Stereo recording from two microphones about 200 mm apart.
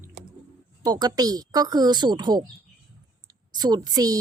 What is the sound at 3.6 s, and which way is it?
Speech, 20° right (ahead or behind).